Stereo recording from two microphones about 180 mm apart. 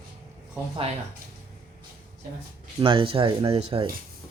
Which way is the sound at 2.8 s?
30° right (ahead or behind).